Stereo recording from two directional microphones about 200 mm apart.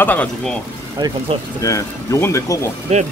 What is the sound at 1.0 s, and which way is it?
Speech, 20° right (ahead or behind).